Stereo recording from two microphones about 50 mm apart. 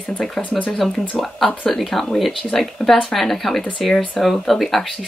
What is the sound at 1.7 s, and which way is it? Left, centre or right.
Speech, centre.